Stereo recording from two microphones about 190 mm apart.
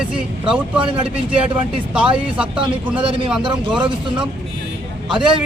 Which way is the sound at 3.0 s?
25° right (ahead or behind).